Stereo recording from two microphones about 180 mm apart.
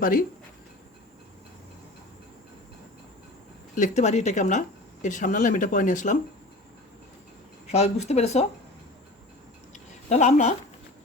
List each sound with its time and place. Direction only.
0.0 s speech: 50° left (ahead or behind)
3.8 s speech: 40° left (ahead or behind)
7.7 s speech: 35° left (ahead or behind)
9.7 s a sound: 40° left (ahead or behind)